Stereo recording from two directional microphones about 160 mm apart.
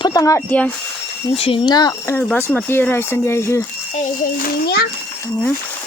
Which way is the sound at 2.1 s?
10° left (ahead or behind).